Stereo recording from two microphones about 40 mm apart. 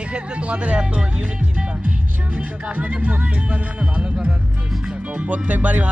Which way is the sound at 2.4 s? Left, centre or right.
Right.